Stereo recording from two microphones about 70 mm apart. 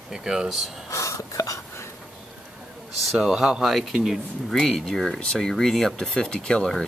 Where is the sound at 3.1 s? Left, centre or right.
Centre.